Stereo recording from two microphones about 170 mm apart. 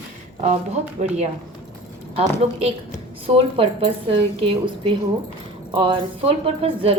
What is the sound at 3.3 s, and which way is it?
A woman's voice, 35° right (ahead or behind).